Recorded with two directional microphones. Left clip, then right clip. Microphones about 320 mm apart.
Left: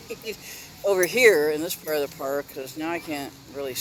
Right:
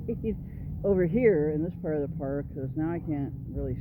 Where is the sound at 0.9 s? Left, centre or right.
Centre.